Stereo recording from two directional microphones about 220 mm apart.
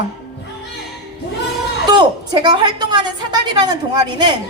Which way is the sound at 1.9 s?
20° right (ahead or behind).